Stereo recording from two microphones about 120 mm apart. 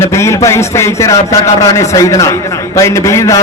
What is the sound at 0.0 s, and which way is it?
A man's voice, 25° left (ahead or behind).